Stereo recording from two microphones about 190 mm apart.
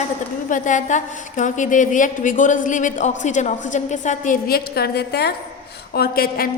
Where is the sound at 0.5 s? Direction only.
40° left (ahead or behind).